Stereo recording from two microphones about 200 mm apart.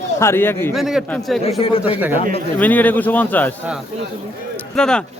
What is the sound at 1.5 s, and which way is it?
Speech, 30° left (ahead or behind).